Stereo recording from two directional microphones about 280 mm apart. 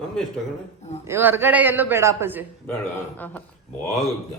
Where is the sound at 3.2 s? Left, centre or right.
Centre.